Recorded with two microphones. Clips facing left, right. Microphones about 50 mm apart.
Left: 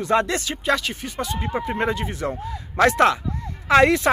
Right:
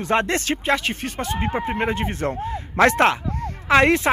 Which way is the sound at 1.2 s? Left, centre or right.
Right.